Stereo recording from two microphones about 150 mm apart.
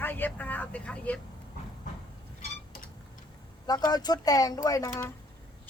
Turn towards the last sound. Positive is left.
turn(degrees=20)  # may be behind; listen again after turning